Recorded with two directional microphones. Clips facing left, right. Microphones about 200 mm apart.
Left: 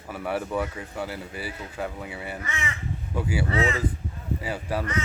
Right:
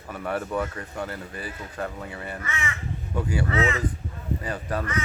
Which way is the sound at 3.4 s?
30° left (ahead or behind).